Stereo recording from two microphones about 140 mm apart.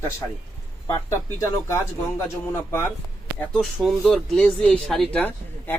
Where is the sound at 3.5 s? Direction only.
Centre (ahead or behind).